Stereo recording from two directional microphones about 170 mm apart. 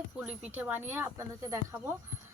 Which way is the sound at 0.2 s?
10° right (ahead or behind).